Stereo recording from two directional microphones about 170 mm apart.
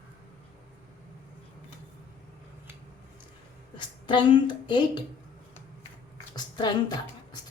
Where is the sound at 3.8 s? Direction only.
30° left (ahead or behind).